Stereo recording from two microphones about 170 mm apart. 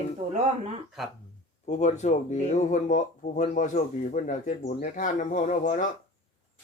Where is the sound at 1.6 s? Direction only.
45° left (ahead or behind).